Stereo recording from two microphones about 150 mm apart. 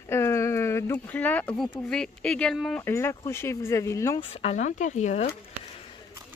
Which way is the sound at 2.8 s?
15° left (ahead or behind).